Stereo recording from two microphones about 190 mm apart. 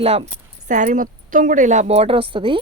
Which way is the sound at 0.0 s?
30° right (ahead or behind).